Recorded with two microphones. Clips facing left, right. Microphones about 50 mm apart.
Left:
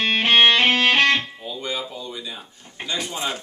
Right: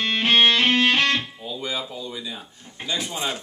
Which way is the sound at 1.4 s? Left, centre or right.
Centre.